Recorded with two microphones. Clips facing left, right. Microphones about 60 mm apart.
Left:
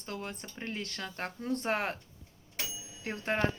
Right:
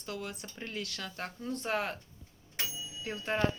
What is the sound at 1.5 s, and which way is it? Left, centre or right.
Speech, left.